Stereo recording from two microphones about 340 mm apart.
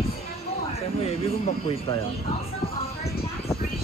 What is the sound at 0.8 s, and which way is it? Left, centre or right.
Speech, centre.